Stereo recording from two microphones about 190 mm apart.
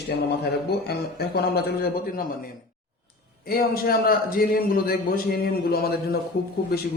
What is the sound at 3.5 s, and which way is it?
A man's voice, 50° left (ahead or behind).